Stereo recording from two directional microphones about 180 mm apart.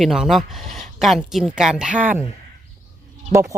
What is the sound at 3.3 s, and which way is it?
Speech, 15° right (ahead or behind).